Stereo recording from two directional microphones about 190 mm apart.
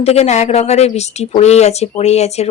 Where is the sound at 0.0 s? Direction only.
35° left (ahead or behind).